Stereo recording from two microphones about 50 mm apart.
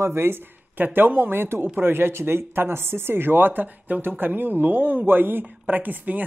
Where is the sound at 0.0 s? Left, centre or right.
Right.